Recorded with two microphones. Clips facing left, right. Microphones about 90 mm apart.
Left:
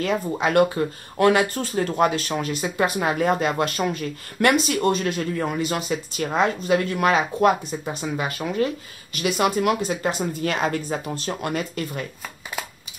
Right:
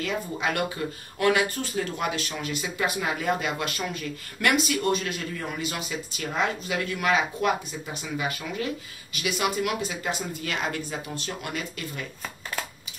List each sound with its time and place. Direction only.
0.0 s speech: 40° left (ahead or behind)